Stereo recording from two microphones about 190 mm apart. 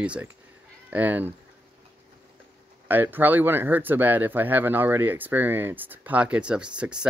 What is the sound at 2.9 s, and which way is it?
Speech, 10° right (ahead or behind).